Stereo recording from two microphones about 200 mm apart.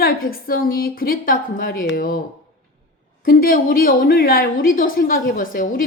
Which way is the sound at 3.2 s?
45° left (ahead or behind).